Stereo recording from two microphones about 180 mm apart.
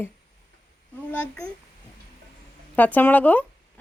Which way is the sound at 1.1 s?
10° left (ahead or behind).